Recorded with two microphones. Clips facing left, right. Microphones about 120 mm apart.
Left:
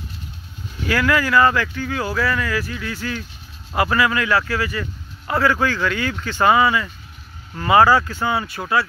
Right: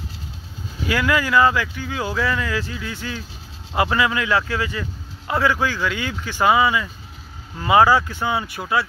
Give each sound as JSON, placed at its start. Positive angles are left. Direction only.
{"t": 0.8, "sound": "speech", "side_deg": -20}